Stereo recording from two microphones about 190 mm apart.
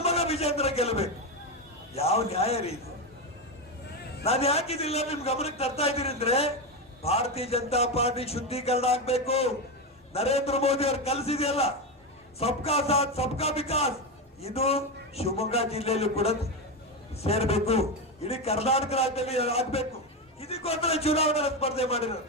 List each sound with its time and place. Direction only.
0.0 s a man's voice: 35° left (ahead or behind)
4.2 s a man's voice: 30° left (ahead or behind)